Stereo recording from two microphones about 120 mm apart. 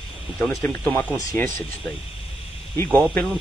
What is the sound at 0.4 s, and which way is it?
Speech, 20° left (ahead or behind).